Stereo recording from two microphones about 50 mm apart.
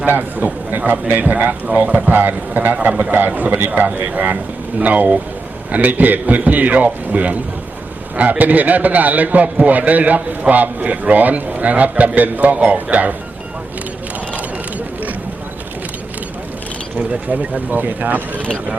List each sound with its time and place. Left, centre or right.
0.0 s speech: right
17.1 s speech: right